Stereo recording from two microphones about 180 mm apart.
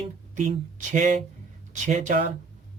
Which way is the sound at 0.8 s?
45° right (ahead or behind).